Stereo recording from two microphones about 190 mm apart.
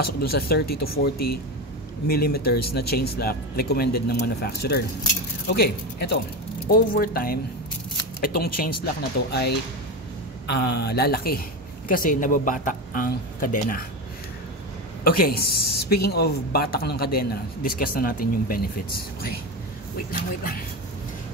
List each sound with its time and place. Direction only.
0.0 s a woman's voice: 55° left (ahead or behind)
15.0 s a woman's voice: 50° left (ahead or behind)